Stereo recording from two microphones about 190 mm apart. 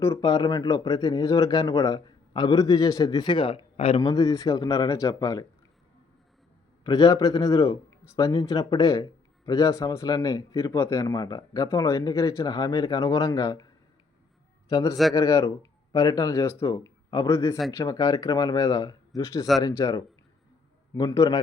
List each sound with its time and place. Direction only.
0.0 s speech: 20° left (ahead or behind)
6.8 s speech: 20° left (ahead or behind)
14.7 s a man's voice: 20° left (ahead or behind)